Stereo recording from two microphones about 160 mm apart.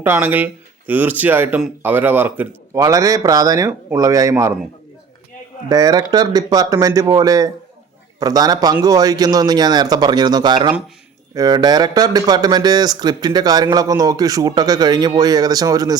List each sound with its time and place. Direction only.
0.0 s speech: 10° right (ahead or behind)
5.6 s speech: 25° right (ahead or behind)